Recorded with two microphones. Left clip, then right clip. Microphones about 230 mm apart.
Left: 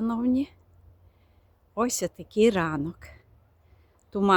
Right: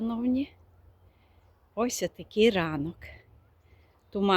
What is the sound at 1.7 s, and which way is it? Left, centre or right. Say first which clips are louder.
Speech: left 2 dB; centre.